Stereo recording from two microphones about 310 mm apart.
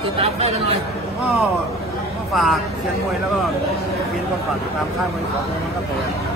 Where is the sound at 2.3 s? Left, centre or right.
Centre.